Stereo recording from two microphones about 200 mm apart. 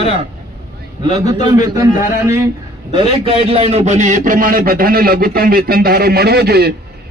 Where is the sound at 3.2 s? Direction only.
30° right (ahead or behind).